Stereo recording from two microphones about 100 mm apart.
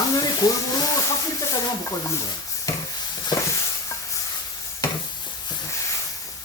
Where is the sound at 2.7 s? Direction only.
35° left (ahead or behind).